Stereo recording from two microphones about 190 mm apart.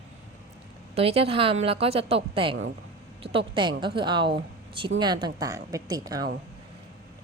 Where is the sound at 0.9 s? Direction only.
30° right (ahead or behind).